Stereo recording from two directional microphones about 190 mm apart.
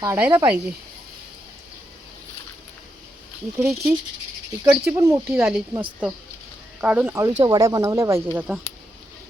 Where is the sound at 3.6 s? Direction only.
Centre (ahead or behind).